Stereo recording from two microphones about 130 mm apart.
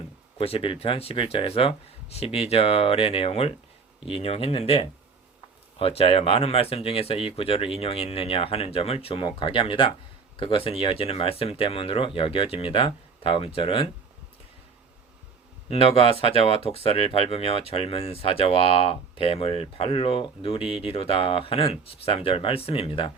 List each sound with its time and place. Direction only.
0.3 s speech: 45° left (ahead or behind)
15.7 s speech: 50° left (ahead or behind)